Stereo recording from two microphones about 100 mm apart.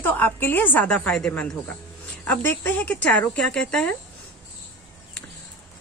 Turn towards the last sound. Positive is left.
turn(degrees=5)  # may be behind; listen again after turning